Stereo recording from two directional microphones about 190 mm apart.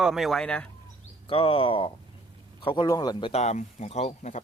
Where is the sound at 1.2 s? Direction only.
30° left (ahead or behind).